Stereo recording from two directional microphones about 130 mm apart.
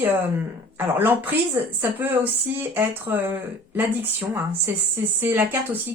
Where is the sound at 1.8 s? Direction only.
15° right (ahead or behind).